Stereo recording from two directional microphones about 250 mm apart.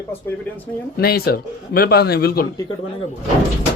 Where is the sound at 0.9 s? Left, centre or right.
Left.